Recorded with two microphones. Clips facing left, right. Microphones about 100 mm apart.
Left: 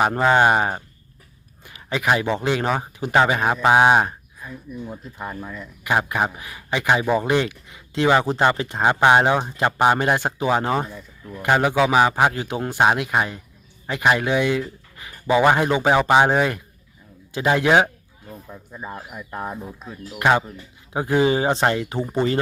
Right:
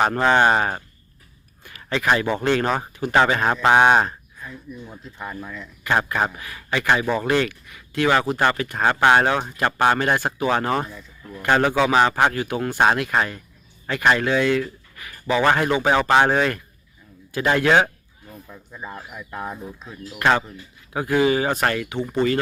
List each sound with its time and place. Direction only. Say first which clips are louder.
0.0 s speech: left 1 dB; 5° left (ahead or behind)
1.6 s a sound: even; 15° left (ahead or behind)
2.3 s speech: right 1 dB; 15° left (ahead or behind)
21.8 s speech: left 1 dB; 35° left (ahead or behind)